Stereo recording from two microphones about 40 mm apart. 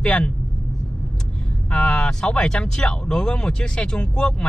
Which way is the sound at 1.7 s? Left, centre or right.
Left.